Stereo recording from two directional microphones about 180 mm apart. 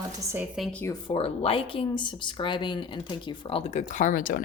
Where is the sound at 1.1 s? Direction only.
30° left (ahead or behind); by 4.4 s 50° left (ahead or behind).